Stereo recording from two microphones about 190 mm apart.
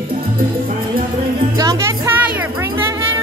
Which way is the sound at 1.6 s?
20° right (ahead or behind).